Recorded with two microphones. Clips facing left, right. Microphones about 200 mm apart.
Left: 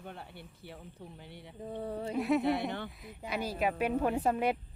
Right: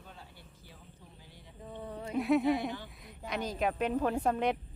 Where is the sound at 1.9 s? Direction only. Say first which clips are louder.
Left 4 dB; 30° left (ahead or behind).